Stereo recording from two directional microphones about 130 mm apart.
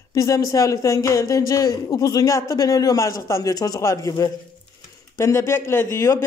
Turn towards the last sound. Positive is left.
turn(degrees=20)  # may be behind; listen again after turning